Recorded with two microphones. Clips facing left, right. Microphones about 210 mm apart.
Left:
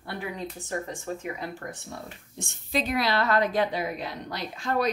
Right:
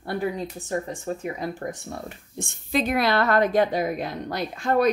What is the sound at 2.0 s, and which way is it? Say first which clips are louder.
Speech: right 5 dB; 50° right (ahead or behind).